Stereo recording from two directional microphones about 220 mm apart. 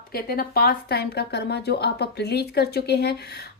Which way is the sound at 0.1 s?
45° left (ahead or behind).